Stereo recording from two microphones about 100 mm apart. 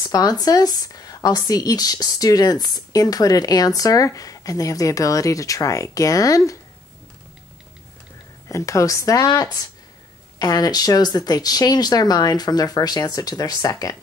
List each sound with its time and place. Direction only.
0.0 s a woman's voice: 35° left (ahead or behind)
8.5 s a woman's voice: 30° left (ahead or behind)